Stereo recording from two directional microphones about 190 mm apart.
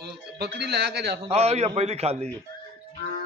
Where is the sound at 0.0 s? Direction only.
60° right (ahead or behind).